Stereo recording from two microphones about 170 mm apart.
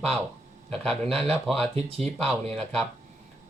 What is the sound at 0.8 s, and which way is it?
Speech, centre (ahead or behind).